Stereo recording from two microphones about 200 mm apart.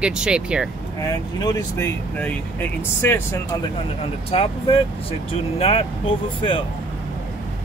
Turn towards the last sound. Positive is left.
turn(degrees=25)  # may be behind; listen again after turning